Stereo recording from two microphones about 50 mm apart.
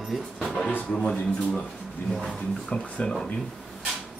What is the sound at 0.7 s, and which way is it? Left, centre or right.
Speech, left.